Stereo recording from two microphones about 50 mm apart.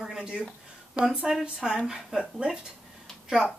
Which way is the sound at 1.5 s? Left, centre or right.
Centre.